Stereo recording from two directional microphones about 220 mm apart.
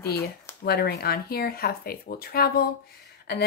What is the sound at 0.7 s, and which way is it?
A woman's voice, 45° left (ahead or behind).